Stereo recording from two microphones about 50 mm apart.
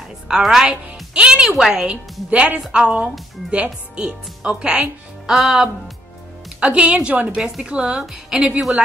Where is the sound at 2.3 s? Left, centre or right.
Right.